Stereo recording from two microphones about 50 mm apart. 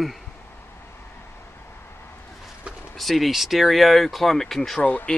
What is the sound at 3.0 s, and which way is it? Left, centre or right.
Speech, centre.